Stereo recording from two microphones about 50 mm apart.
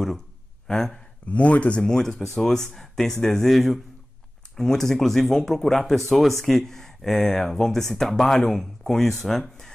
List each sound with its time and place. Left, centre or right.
0.7 s speech: centre
1.3 s speech: left; by 9.7 s centre